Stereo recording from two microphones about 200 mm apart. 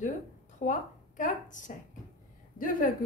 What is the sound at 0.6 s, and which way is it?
A woman's voice, 40° left (ahead or behind).